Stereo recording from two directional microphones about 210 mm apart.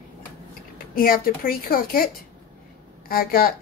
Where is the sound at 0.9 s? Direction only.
45° left (ahead or behind).